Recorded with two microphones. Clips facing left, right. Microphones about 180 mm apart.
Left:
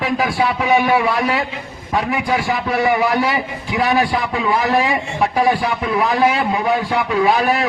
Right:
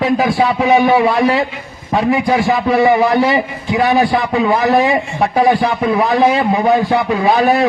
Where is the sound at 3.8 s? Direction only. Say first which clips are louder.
Right 4 dB; 40° right (ahead or behind).